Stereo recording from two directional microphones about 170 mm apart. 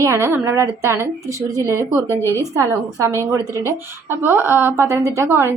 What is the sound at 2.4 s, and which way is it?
A woman's voice, 20° right (ahead or behind).